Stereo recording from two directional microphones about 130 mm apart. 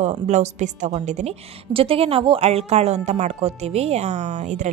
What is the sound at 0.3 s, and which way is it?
A woman's voice, 65° right (ahead or behind).